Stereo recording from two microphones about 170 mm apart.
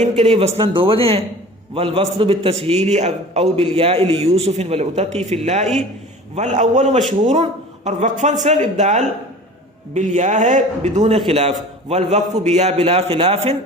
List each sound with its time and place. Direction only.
0.0 s a man's voice: 35° right (ahead or behind)